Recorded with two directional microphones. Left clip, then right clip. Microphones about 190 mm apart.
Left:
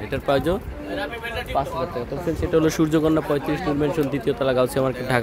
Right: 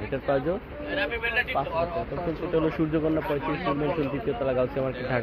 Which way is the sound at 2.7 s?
40° left (ahead or behind).